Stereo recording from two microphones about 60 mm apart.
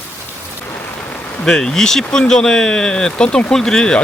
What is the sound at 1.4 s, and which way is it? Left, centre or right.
Speech, centre.